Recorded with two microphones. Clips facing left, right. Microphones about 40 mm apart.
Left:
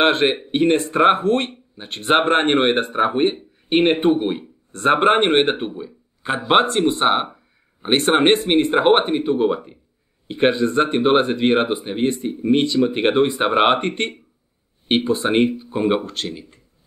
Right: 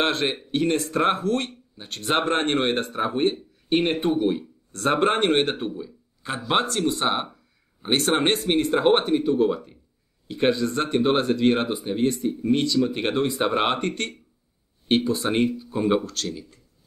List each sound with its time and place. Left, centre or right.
0.0 s speech: left